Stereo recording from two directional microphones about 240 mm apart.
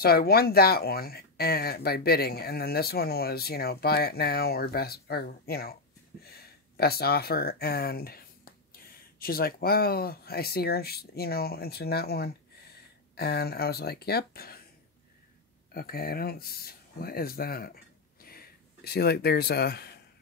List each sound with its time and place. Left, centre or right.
0.0 s speech: left
15.7 s speech: left
18.9 s speech: left